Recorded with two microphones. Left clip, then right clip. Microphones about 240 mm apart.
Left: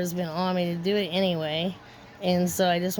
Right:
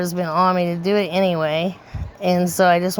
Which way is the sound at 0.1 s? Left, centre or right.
Centre.